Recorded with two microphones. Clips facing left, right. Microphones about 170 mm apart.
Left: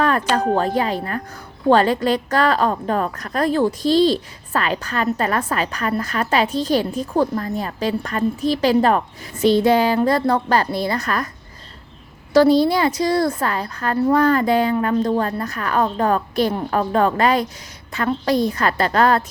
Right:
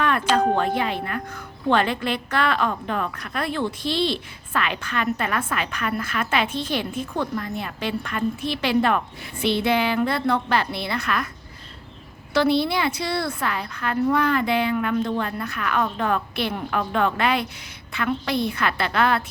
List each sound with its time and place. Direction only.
0.0 s a sound: 40° left (ahead or behind)
0.5 s a woman's voice: 35° left (ahead or behind)
12.3 s a woman's voice: 40° left (ahead or behind)